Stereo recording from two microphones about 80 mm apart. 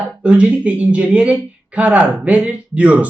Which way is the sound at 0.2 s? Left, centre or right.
Centre.